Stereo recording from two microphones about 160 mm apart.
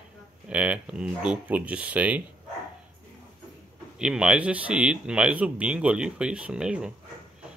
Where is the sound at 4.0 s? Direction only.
5° right (ahead or behind).